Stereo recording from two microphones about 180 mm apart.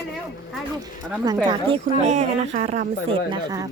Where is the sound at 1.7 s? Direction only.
40° right (ahead or behind).